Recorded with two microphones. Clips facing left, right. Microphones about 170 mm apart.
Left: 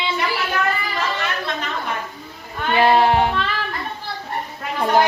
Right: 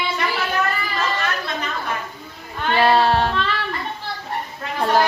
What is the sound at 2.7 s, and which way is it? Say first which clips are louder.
Child singing: left 1 dB; 15° left (ahead or behind).